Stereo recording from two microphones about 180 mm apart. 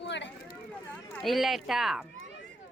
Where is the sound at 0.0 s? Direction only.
80° left.